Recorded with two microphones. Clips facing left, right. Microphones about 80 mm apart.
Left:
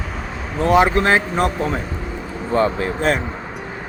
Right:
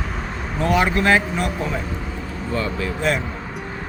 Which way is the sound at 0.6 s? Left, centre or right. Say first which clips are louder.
Left 4 dB; left.